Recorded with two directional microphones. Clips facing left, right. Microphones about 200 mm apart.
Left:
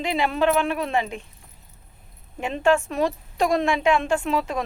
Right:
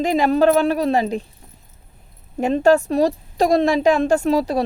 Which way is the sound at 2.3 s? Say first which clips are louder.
Right 6 dB; 40° right (ahead or behind).